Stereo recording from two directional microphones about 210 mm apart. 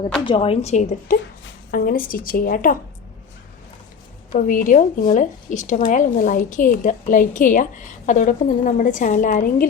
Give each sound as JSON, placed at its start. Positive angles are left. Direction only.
{"t": 0.3, "sound": "a woman's voice", "side_deg": 25}
{"t": 4.3, "sound": "a woman's voice", "side_deg": 40}